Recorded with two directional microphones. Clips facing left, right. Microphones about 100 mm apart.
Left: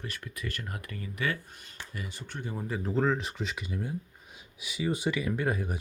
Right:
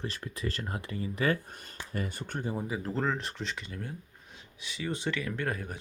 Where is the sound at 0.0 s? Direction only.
30° right (ahead or behind); by 2.4 s 50° right (ahead or behind).